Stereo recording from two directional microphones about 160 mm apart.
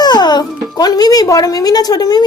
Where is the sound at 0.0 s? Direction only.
25° left (ahead or behind).